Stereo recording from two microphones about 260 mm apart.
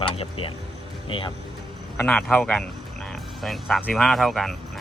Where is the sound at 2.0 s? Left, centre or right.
Centre.